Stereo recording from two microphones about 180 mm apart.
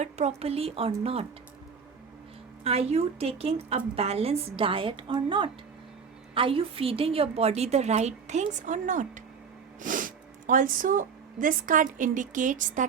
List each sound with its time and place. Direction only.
0.0 s a woman's voice: 35° right (ahead or behind)
2.6 s a woman's voice: 35° right (ahead or behind)